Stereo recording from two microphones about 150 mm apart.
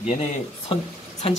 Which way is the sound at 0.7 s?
45° left (ahead or behind).